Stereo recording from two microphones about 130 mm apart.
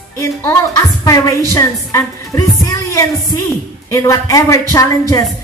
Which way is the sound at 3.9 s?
25° left (ahead or behind).